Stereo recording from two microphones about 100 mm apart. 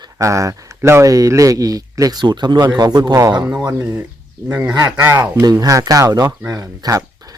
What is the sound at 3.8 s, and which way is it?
Speech, 20° right (ahead or behind).